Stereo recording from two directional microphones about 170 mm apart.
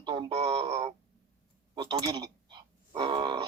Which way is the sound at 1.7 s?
25° right (ahead or behind).